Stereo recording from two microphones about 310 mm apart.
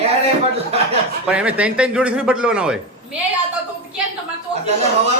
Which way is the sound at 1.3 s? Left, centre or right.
Centre.